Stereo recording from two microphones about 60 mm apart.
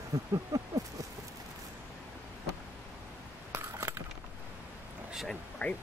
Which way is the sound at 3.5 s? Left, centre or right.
Right.